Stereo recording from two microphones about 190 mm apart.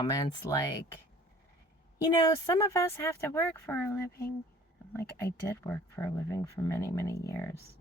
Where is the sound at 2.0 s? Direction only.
20° left (ahead or behind).